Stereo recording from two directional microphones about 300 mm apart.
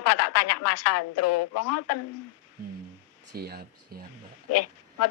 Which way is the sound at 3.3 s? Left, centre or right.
Right.